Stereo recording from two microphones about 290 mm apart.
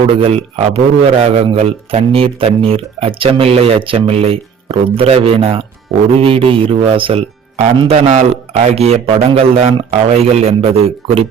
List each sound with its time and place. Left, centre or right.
0.1 s speech: centre